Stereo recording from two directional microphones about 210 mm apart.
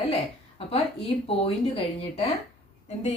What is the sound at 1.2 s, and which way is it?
Speech, 25° left (ahead or behind).